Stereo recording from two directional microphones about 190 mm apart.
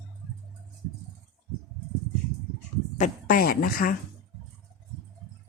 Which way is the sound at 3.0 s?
50° left (ahead or behind).